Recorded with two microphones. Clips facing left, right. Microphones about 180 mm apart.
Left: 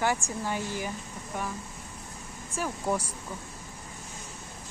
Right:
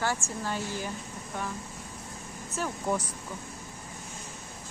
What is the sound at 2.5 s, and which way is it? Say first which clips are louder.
Speech: left 1 dB; 10° left (ahead or behind).